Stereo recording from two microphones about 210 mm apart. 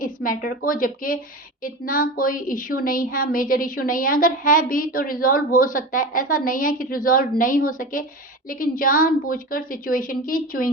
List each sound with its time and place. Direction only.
0.0 s a woman's voice: 40° left (ahead or behind)